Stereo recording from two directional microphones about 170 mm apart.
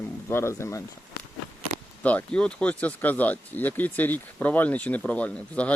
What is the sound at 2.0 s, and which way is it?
Speech, 10° left (ahead or behind).